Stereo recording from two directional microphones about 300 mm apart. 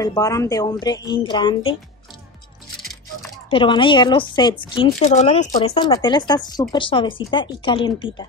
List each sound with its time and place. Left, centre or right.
0.0 s speech: centre
2.8 s music: centre
3.4 s speech: centre